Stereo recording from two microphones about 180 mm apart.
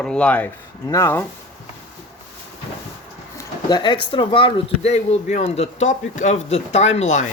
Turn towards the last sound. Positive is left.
turn(degrees=40)  # may be behind; listen again after turning